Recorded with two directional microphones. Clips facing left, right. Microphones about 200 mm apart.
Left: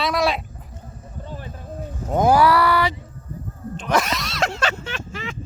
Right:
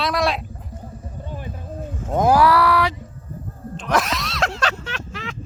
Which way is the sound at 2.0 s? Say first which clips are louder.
Even; centre (ahead or behind).